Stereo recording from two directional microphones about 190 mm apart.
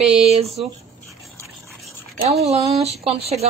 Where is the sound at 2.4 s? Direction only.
35° right (ahead or behind).